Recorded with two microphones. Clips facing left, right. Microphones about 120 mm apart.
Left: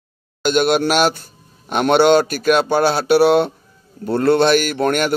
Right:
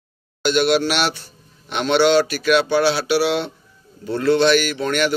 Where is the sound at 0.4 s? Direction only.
45° left (ahead or behind).